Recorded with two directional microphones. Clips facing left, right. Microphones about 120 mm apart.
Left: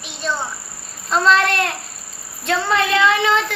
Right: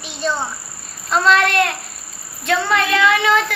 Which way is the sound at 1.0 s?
30° left (ahead or behind).